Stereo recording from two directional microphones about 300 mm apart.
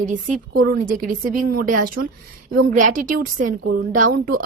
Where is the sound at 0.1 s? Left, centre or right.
Right.